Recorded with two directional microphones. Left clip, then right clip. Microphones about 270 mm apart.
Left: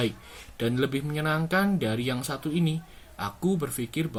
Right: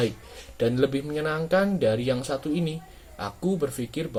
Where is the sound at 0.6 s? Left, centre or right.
Left.